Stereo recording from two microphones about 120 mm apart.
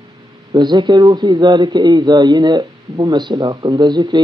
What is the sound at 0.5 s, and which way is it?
A man's voice, 40° right (ahead or behind).